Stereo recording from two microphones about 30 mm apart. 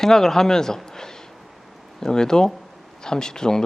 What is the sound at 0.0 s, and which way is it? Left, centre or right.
Speech, centre.